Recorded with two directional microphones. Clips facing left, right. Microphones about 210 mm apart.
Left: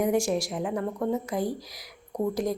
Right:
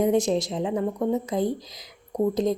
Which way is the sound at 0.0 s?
20° right (ahead or behind).